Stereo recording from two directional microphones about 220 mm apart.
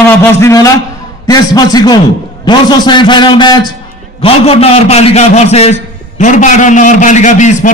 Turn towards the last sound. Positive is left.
turn(degrees=35)  # may be behind; listen again after turning